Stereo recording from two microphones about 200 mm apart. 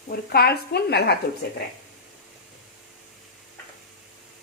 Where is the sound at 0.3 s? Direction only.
50° left (ahead or behind).